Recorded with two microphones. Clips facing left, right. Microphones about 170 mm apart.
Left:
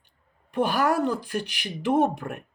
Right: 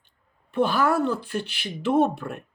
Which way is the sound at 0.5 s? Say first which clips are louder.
Right 1 dB; 15° left (ahead or behind).